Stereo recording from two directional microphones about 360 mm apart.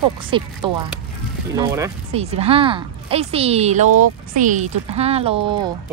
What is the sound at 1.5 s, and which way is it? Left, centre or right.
Speech, centre.